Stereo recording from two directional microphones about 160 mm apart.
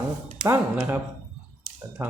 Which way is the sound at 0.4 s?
15° right (ahead or behind).